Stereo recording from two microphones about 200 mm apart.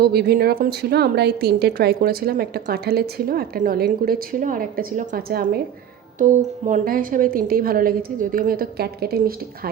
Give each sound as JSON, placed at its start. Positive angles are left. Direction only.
{"t": 0.0, "sound": "a woman's voice", "side_deg": -50}